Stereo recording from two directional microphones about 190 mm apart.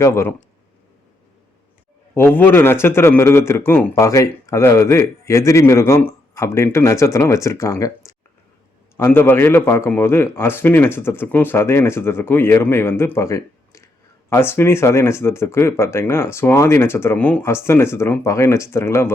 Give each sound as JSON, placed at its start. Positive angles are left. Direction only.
{"t": 0.0, "sound": "a man's voice", "side_deg": 15}
{"t": 2.1, "sound": "a man's voice", "side_deg": 10}